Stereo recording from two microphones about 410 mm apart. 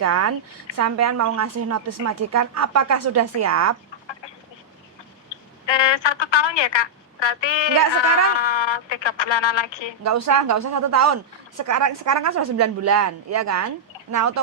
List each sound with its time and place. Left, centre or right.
0.0 s speech: right
5.6 s a woman's voice: left
7.7 s speech: right
8.4 s speech: left
10.0 s speech: right